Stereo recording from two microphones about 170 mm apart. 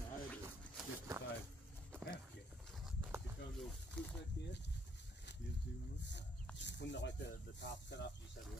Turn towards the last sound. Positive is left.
turn(degrees=90)